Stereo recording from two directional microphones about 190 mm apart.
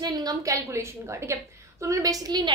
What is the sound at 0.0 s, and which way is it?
A woman's voice, 20° right (ahead or behind).